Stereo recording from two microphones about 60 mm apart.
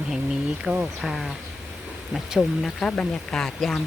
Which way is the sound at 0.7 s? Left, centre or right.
Right.